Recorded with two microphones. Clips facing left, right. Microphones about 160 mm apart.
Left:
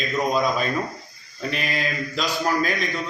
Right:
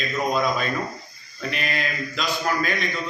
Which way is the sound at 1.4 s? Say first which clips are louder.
Left 1 dB; 35° left (ahead or behind).